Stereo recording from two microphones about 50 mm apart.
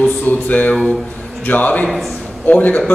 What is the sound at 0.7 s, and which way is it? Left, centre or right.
Speech, centre.